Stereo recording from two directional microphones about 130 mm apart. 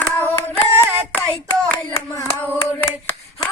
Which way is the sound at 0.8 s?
20° right (ahead or behind).